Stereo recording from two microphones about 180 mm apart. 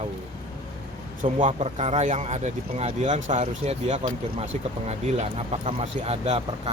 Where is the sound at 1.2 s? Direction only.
45° right (ahead or behind).